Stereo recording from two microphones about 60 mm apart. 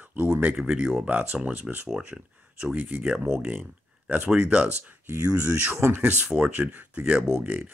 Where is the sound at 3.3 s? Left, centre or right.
Left.